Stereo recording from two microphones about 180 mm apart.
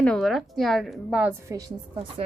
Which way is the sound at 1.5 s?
20° right (ahead or behind).